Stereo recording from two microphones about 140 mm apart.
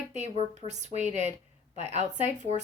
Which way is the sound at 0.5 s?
55° right (ahead or behind).